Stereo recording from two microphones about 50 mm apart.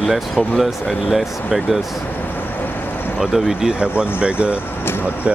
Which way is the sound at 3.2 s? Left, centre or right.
Centre.